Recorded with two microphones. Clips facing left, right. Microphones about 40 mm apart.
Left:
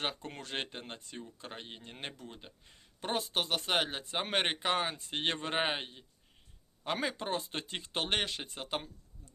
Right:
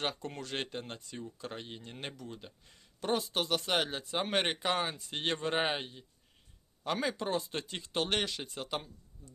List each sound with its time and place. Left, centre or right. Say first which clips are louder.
0.0 s speech: right 1 dB; left
2.1 s speech: right 3 dB; left
5.5 s speech: right 1 dB; centre
6.8 s speech: right 1 dB; left